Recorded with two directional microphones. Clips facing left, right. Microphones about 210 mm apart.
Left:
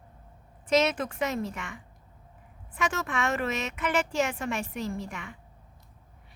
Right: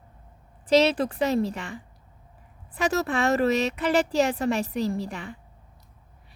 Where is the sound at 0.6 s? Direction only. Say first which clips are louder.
Right 5 dB; 35° right (ahead or behind).